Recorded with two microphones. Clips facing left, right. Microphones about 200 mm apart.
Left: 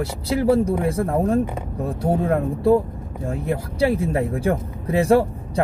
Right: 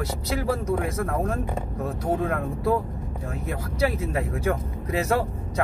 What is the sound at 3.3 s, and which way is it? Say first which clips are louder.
Speech: left 8 dB; 30° left (ahead or behind).